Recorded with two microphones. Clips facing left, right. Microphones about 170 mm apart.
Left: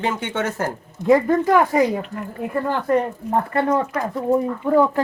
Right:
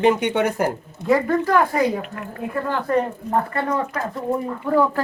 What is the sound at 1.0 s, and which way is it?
Speech, 15° left (ahead or behind).